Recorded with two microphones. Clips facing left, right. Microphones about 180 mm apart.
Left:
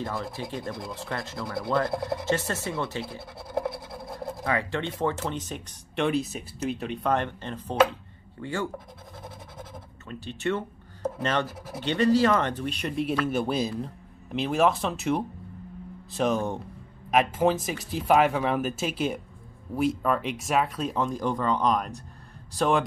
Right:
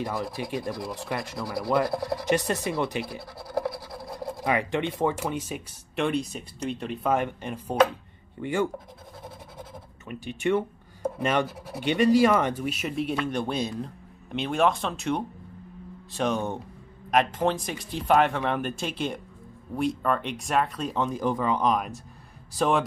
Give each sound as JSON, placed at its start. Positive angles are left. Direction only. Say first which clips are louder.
{"t": 0.0, "sound": "speech", "louder": "right 2 dB", "side_deg": -15}
{"t": 3.6, "sound": "a sound", "louder": "even", "side_deg": 5}
{"t": 4.5, "sound": "speech", "louder": "right 3 dB", "side_deg": -15}
{"t": 10.0, "sound": "speech", "louder": "right 2 dB", "side_deg": -15}
{"t": 11.4, "sound": "speech", "louder": "right 1 dB", "side_deg": 0}
{"t": 11.8, "sound": "speech", "louder": "right 2 dB", "side_deg": -15}